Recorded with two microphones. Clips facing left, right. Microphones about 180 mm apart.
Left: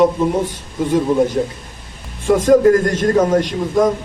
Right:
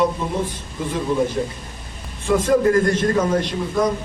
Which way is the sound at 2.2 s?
45° left (ahead or behind).